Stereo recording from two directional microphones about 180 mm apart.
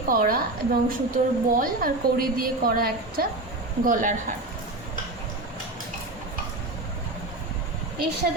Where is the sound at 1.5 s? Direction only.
50° right (ahead or behind).